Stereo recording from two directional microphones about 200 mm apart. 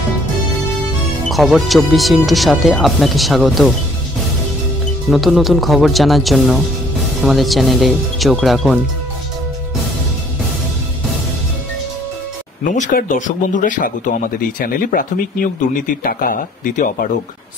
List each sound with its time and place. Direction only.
1.3 s speech: centre (ahead or behind)
5.1 s speech: centre (ahead or behind)
12.7 s speech: 40° left (ahead or behind)